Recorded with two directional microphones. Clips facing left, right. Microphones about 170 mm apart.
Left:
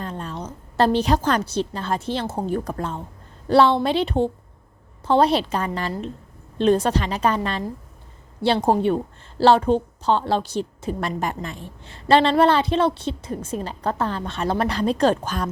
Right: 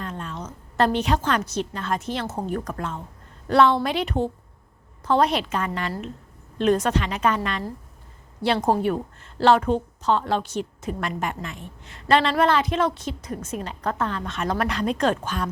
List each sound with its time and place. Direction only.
0.0 s a woman's voice: 35° left (ahead or behind)